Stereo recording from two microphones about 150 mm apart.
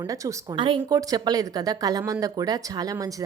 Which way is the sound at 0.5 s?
35° right (ahead or behind).